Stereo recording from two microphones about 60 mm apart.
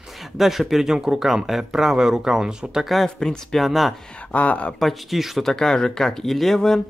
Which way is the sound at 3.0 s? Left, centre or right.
Centre.